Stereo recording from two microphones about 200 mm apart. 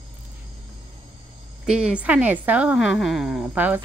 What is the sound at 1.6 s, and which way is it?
A woman's voice, 5° right (ahead or behind).